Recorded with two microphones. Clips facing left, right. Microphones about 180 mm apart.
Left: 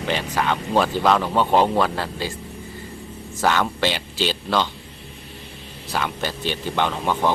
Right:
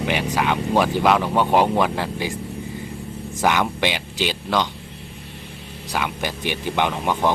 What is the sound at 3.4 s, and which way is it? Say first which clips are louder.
Speech: even; 15° right (ahead or behind).